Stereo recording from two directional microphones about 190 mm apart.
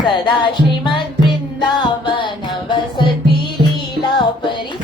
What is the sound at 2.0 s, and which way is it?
Music, 25° left (ahead or behind).